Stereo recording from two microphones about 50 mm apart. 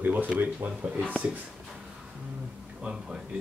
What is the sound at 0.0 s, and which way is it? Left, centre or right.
Speech, right.